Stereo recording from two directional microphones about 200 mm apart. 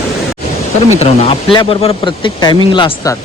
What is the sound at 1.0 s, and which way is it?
Speech, 30° left (ahead or behind).